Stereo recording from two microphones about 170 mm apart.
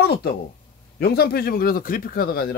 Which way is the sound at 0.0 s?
65° left (ahead or behind).